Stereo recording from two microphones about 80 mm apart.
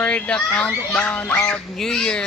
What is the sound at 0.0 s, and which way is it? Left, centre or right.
A child's voice, centre.